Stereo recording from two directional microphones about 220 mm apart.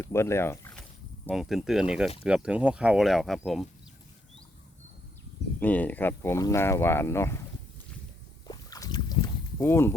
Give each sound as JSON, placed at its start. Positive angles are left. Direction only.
{"t": 0.0, "sound": "speech", "side_deg": 10}
{"t": 5.5, "sound": "speech", "side_deg": 5}
{"t": 8.4, "sound": "rowboat", "side_deg": 15}